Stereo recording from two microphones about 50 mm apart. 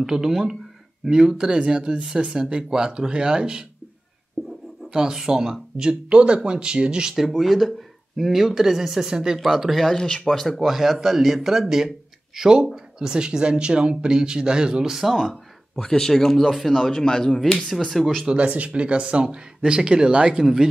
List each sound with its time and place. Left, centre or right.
0.0 s speech: centre
4.9 s speech: centre
7.3 s speech: centre
9.9 s speech: centre
15.1 s speech: centre
17.9 s speech: centre
18.2 s speech: right